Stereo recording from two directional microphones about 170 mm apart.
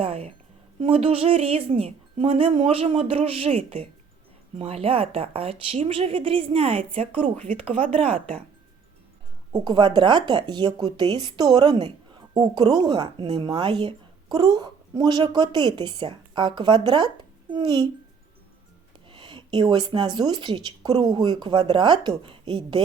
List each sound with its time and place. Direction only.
0.0 s a sound: 35° right (ahead or behind)
0.8 s a woman's voice: 35° right (ahead or behind)
7.7 s speech: 5° left (ahead or behind)
9.5 s speech: 25° right (ahead or behind)
19.0 s speech: 30° right (ahead or behind)